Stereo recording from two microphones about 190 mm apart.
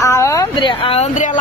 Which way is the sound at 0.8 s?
35° left (ahead or behind).